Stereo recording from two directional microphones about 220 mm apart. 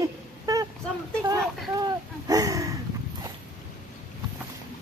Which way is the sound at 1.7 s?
15° right (ahead or behind).